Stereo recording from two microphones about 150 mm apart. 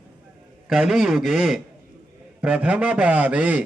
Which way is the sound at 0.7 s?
5° right (ahead or behind).